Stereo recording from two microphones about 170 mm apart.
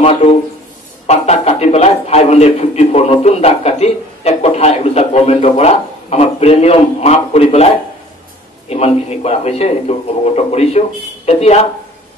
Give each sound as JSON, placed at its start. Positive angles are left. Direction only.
{"t": 0.0, "sound": "a man's voice", "side_deg": 40}
{"t": 8.6, "sound": "a man's voice", "side_deg": 40}